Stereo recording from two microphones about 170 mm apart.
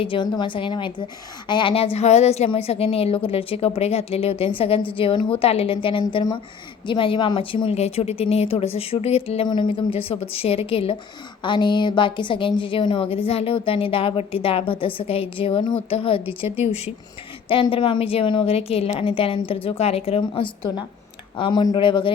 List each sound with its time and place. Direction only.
0.0 s a woman's voice: 30° left (ahead or behind)